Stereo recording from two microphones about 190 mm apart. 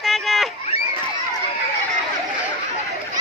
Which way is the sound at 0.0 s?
Centre (ahead or behind).